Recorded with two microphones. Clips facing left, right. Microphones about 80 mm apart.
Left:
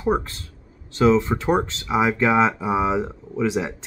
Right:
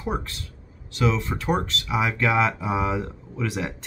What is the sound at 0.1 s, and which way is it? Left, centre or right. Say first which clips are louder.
Speech: left 8 dB; left.